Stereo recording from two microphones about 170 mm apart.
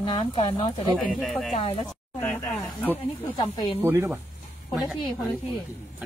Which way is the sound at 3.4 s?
25° left (ahead or behind).